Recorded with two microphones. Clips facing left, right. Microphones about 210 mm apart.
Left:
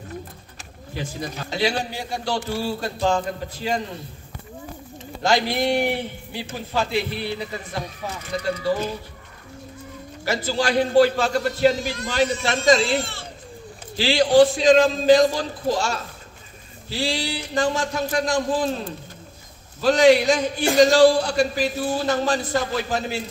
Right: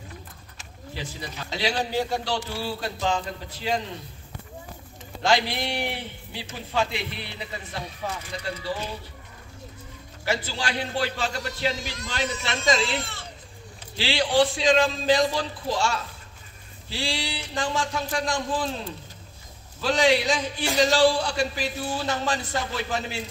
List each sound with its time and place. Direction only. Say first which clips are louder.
0.9 s a man's voice: left 6 dB; 50° left (ahead or behind)
1.9 s a man's voice: right 6 dB; 15° left (ahead or behind)
2.2 s a man's voice: left 4 dB; 45° left (ahead or behind)
5.2 s a man's voice: left 3 dB; 45° left (ahead or behind)
8.6 s a man's voice: left 8 dB; 45° left (ahead or behind)
10.2 s a man's voice: left 6 dB; 40° left (ahead or behind)